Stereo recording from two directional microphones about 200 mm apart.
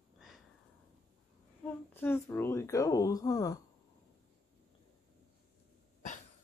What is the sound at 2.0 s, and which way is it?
Speech, 10° left (ahead or behind).